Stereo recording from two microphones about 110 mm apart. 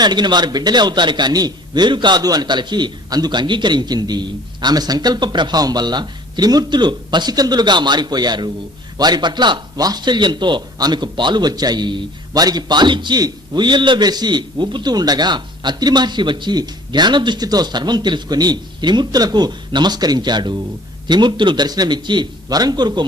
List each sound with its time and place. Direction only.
0.0 s a man's voice: 40° right (ahead or behind)